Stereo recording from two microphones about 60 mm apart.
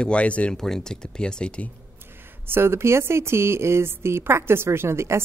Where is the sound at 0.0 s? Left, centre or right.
Centre.